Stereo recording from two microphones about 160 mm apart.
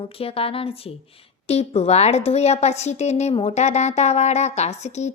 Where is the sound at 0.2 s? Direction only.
35° left (ahead or behind).